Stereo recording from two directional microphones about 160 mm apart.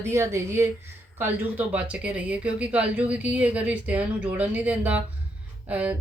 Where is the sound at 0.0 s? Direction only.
15° right (ahead or behind).